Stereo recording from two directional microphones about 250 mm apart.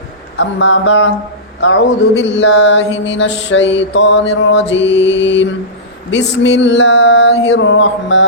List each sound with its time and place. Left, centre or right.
0.3 s mantra: left